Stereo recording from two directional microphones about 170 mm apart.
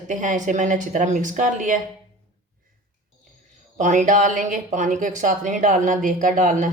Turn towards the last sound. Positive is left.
turn(degrees=-50)  # may be behind; listen again after turning